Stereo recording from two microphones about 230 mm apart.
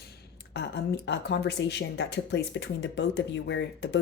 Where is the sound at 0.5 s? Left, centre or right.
Left.